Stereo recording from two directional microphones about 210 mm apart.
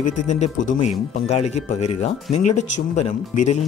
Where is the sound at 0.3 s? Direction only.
35° left (ahead or behind).